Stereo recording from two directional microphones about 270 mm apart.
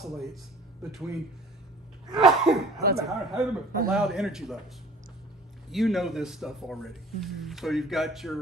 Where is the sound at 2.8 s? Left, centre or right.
Right.